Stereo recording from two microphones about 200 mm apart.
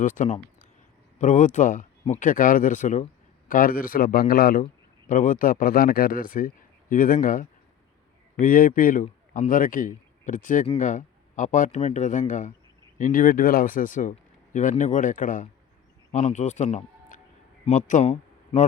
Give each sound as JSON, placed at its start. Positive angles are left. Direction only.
{"t": 0.0, "sound": "a man's voice", "side_deg": 40}